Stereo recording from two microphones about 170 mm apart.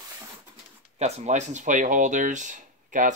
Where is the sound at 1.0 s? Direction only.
45° right (ahead or behind).